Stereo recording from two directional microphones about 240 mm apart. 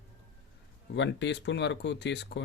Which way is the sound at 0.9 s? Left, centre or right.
Left.